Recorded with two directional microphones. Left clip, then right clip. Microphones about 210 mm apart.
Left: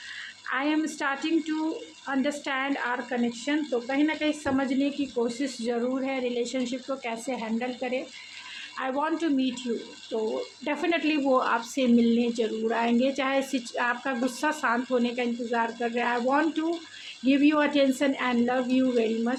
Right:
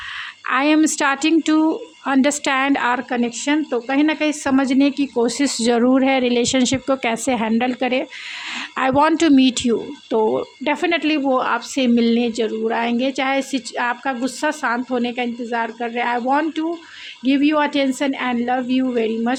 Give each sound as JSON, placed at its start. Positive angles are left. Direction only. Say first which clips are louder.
{"t": 0.4, "sound": "a woman's voice", "louder": "right 11 dB", "side_deg": -55}
{"t": 10.6, "sound": "a woman's voice", "louder": "right 6 dB", "side_deg": -40}